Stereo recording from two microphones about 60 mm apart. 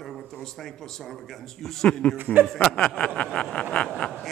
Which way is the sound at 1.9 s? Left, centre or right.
Centre.